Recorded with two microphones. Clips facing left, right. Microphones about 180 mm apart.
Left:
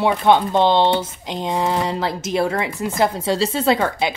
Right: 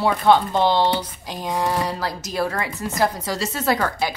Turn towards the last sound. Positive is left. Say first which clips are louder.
# left 3 dB
turn(degrees=25)  # may be behind; listen again after turning